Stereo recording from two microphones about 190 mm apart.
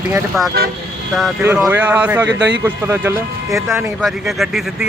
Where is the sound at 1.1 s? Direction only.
Centre (ahead or behind).